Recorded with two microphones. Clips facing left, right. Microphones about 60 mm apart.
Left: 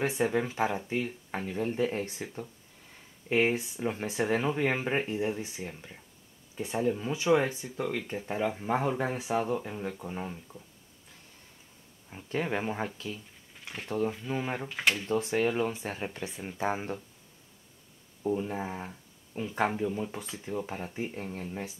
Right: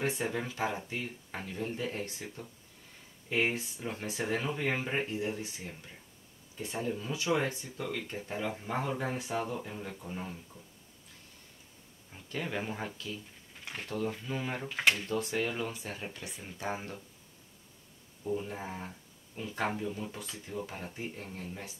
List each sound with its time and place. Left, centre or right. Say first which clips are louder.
0.0 s speech: left 5 dB; centre
12.1 s speech: left 6 dB; left
13.6 s a sound: left 1 dB; centre
13.8 s speech: left 5 dB; left
14.7 s speech: right 2 dB; centre
15.0 s speech: left 5 dB; left
18.4 s speech: left 5 dB; centre